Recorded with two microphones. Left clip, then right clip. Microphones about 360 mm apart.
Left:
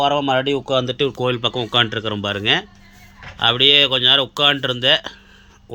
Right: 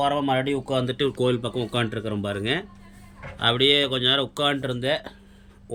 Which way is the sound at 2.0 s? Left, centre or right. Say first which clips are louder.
Left 6 dB; left.